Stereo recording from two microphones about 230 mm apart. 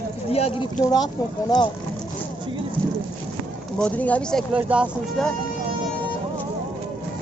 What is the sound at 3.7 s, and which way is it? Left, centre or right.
Speech, centre.